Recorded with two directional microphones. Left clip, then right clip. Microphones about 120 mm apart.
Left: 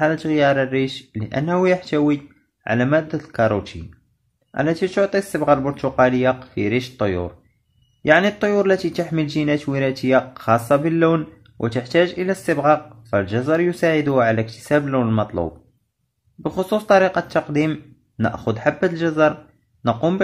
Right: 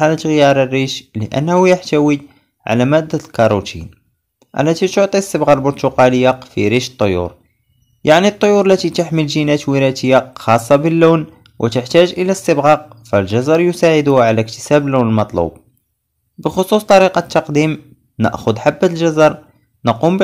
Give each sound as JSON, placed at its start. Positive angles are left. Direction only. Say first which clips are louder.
{"t": 0.0, "sound": "speech", "louder": "right 6 dB", "side_deg": -40}
{"t": 16.4, "sound": "speech", "louder": "right 6 dB", "side_deg": -35}